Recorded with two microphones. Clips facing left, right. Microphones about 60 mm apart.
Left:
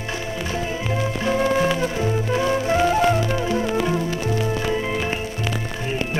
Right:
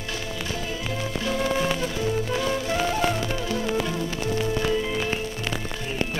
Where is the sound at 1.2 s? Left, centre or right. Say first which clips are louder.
Left 5 dB; left.